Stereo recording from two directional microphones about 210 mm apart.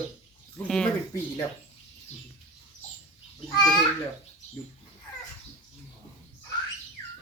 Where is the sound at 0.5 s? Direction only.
5° left (ahead or behind).